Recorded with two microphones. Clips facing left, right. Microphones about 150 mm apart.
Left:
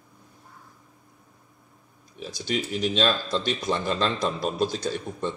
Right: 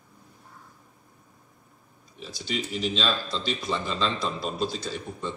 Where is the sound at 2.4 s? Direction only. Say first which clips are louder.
Left 3 dB; 55° left (ahead or behind).